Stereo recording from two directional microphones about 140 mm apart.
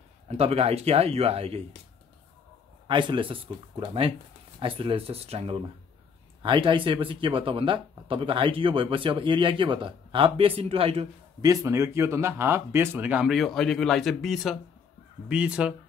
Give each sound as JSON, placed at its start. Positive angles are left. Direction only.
{"t": 0.3, "sound": "speech", "side_deg": -45}
{"t": 2.9, "sound": "speech", "side_deg": -35}
{"t": 6.4, "sound": "speech", "side_deg": -35}
{"t": 11.4, "sound": "speech", "side_deg": -20}